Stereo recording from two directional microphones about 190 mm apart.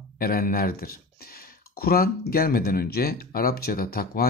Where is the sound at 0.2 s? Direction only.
50° left (ahead or behind).